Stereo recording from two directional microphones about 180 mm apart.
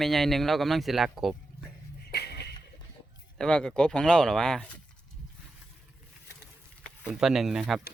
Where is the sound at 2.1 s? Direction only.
65° left (ahead or behind).